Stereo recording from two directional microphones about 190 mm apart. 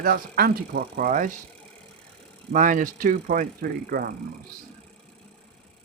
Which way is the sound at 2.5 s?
45° right (ahead or behind).